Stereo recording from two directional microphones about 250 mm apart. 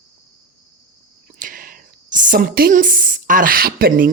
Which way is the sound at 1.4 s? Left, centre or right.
Right.